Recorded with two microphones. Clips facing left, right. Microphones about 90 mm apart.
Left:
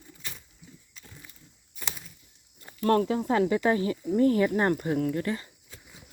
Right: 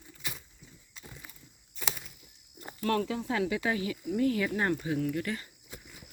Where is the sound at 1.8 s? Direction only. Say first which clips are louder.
Right 2 dB; 5° left (ahead or behind).